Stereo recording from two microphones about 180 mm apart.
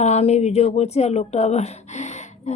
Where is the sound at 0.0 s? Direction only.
35° left (ahead or behind).